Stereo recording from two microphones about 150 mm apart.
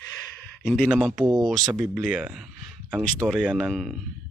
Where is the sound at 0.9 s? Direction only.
Centre (ahead or behind).